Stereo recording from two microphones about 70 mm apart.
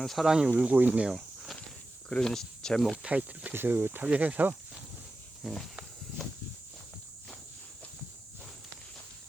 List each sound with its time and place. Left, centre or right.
0.0 s speech: centre
0.3 s speech: centre
0.5 s speech: right
2.0 s speech: centre
3.0 s speech: centre
3.5 s speech: right
4.0 s speech: centre
5.4 s speech: centre